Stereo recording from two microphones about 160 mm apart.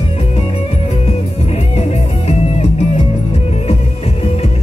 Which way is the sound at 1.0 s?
40° left (ahead or behind).